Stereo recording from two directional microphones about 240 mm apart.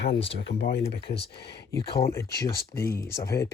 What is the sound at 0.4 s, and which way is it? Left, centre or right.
Speech, left.